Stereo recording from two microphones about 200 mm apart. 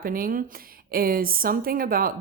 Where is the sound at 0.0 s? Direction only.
45° right (ahead or behind).